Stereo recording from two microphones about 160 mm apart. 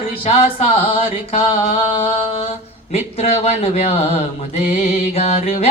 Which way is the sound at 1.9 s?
35° left (ahead or behind).